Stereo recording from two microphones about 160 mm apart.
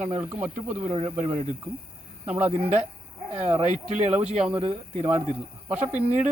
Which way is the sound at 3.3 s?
45° right (ahead or behind).